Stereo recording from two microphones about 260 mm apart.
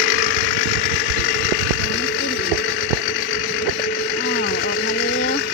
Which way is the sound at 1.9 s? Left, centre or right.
Left.